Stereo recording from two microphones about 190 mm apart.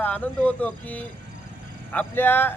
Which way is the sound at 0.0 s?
10° left (ahead or behind).